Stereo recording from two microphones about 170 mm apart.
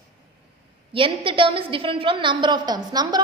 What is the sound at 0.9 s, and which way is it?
A woman's voice, 30° right (ahead or behind).